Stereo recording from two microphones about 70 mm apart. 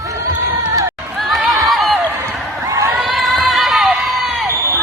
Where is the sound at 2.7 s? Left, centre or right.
Right.